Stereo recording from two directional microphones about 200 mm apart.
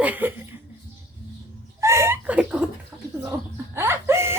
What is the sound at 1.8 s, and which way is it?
Laughter, 15° right (ahead or behind).